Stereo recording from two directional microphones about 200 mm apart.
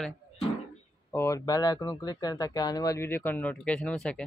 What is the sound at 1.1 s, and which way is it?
Speech, 15° left (ahead or behind).